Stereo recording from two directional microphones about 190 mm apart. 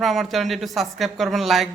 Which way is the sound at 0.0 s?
Centre (ahead or behind).